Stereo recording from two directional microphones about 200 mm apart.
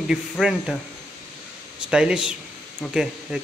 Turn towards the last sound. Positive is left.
turn(degrees=-5)  # may be behind; listen again after turning